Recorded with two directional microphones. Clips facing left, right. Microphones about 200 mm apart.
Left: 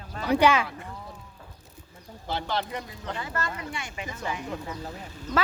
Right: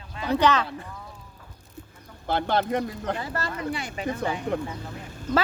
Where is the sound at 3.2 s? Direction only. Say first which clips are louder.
Right 3 dB; 35° right (ahead or behind).